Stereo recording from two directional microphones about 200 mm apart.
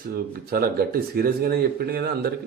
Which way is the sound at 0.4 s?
50° right (ahead or behind).